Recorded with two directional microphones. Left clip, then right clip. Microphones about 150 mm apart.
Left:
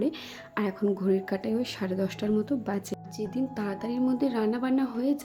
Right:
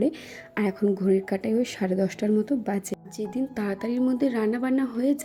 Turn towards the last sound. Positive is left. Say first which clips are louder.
# right 3 dB
turn(degrees=-20)  # may be behind; listen again after turning